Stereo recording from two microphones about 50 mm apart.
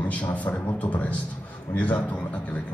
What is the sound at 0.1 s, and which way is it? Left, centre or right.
A man's voice, left.